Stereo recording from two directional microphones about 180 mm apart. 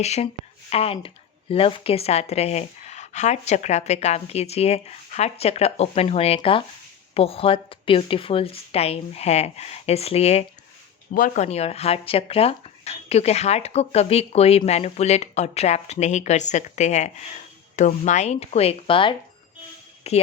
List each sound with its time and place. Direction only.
0.0 s speech: 35° left (ahead or behind)
11.1 s speech: 50° left (ahead or behind)
11.4 s speech: 35° left (ahead or behind)